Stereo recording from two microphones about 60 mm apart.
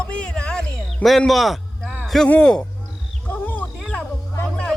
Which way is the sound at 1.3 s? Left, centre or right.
Centre.